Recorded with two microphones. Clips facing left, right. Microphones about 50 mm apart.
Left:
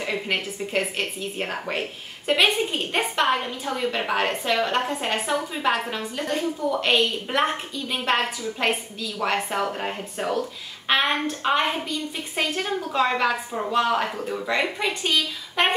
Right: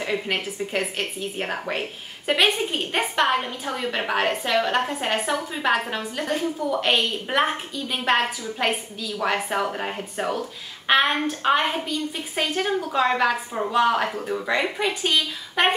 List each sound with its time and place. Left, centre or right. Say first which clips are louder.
0.0 s a woman's voice: right 1 dB; centre